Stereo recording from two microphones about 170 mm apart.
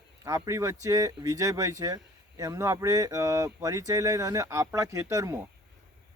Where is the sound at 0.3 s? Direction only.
20° right (ahead or behind).